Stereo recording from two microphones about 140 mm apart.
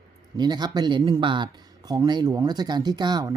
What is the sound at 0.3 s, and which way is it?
Speech, 30° right (ahead or behind).